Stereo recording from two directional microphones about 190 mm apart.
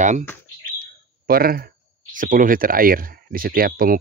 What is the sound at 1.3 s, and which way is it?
Speech, 50° right (ahead or behind).